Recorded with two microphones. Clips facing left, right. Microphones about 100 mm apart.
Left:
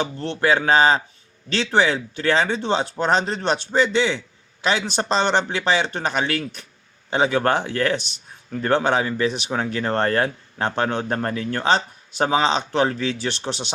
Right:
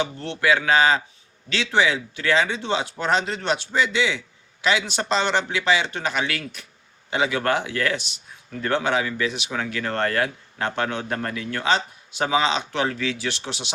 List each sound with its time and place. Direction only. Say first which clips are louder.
0.0 s speech: left 2 dB; 35° left (ahead or behind)